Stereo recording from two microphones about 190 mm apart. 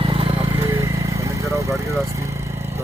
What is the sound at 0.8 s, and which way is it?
Vehicle, 15° right (ahead or behind).